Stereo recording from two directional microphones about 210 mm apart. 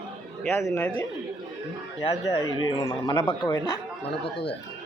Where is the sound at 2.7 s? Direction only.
25° left (ahead or behind).